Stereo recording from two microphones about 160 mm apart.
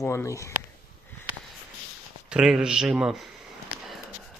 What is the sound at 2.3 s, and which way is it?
Speech, 5° right (ahead or behind).